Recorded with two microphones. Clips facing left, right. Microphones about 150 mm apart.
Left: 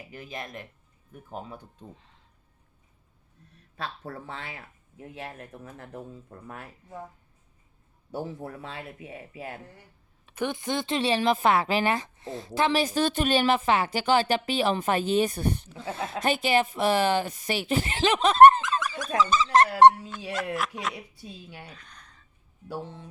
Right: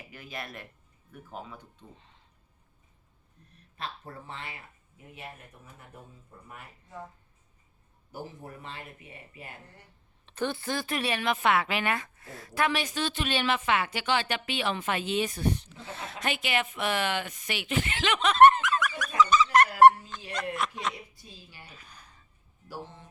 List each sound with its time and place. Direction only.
0.2 s speech: 20° left (ahead or behind)
1.3 s a woman's voice: 35° left (ahead or behind)
2.0 s speech: centre (ahead or behind)
4.0 s speech: 90° left
8.1 s speech: 80° left
10.2 s a woman's voice: 10° left (ahead or behind); by 19.6 s 30° left (ahead or behind)
20.3 s speech: 5° left (ahead or behind)
21.7 s a sound: 5° right (ahead or behind)
22.7 s speech: 75° left (ahead or behind)